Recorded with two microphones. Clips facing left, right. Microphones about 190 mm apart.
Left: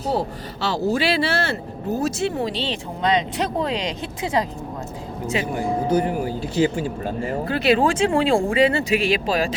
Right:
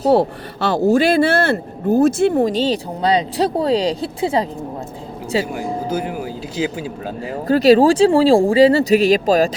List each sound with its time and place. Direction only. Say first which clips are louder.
0.1 s speech: right 9 dB; 60° right (ahead or behind); by 4.4 s 30° right (ahead or behind)
5.5 s speech: left 2 dB; 5° right (ahead or behind)
7.4 s speech: right 8 dB; 40° right (ahead or behind)